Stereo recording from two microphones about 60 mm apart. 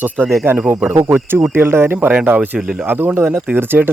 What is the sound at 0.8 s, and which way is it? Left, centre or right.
Speech, right.